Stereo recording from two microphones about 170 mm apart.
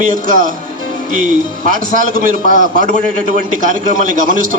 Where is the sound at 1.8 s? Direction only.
55° right (ahead or behind).